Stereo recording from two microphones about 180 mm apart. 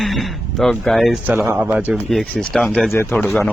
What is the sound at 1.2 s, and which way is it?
Speech, 10° right (ahead or behind).